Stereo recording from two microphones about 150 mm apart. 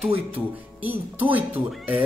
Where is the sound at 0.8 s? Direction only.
10° right (ahead or behind).